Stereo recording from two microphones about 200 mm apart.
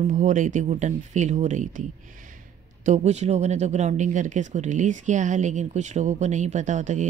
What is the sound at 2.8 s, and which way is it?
Speech, 35° right (ahead or behind).